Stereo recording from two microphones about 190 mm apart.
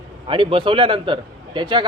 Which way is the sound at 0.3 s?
25° right (ahead or behind).